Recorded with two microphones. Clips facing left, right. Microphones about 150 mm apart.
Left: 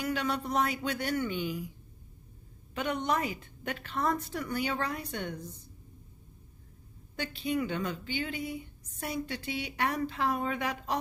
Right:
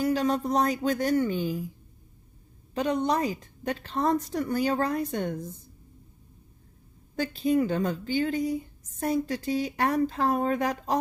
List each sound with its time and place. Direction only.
0.0 s a woman's voice: 35° right (ahead or behind)
2.7 s a woman's voice: 35° right (ahead or behind)
7.2 s a woman's voice: 40° right (ahead or behind)